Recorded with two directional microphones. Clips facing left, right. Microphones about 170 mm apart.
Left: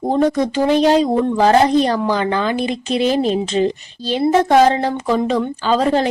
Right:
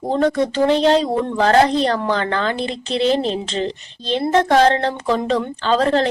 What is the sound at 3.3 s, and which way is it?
Speech, 10° left (ahead or behind).